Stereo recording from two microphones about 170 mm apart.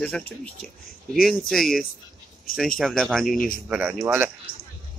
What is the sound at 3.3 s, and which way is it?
Speech, 55° left (ahead or behind).